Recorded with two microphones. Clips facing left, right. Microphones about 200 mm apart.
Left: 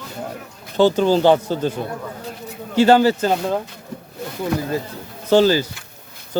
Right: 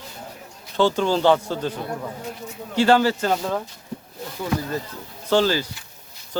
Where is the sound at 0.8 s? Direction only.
40° left (ahead or behind).